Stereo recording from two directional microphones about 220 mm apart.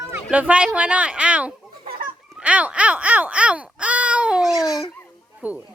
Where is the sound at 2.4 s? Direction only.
5° right (ahead or behind).